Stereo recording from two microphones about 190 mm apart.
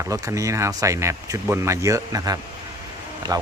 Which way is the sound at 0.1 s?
15° right (ahead or behind).